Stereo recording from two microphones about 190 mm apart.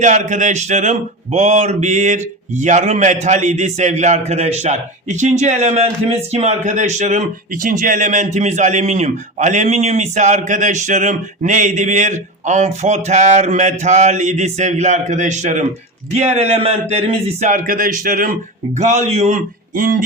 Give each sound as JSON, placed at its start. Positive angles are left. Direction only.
{"t": 0.0, "sound": "speech", "side_deg": -40}
{"t": 18.8, "sound": "speech", "side_deg": -35}